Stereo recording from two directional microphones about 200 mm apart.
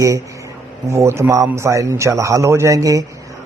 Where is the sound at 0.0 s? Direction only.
15° right (ahead or behind).